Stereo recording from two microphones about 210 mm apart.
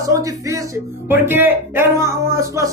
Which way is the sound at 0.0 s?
15° right (ahead or behind).